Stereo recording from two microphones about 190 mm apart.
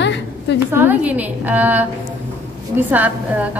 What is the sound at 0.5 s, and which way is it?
A woman's voice, 10° right (ahead or behind).